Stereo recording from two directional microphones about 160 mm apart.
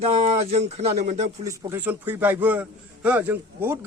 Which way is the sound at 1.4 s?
20° right (ahead or behind).